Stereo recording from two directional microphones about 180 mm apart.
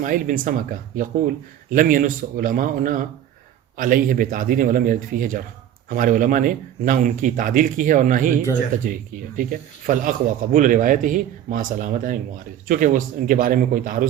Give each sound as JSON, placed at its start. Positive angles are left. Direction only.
{"t": 0.0, "sound": "speech", "side_deg": -50}